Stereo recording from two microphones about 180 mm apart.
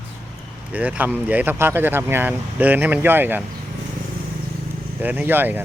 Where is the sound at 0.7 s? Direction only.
10° right (ahead or behind).